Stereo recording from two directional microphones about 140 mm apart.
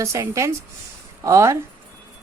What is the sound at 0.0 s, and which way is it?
A woman's voice, 20° right (ahead or behind).